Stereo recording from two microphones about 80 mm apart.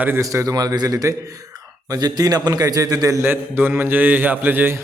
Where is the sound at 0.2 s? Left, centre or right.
Right.